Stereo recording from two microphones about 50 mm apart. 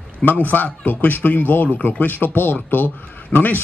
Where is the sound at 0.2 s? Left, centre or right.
Left.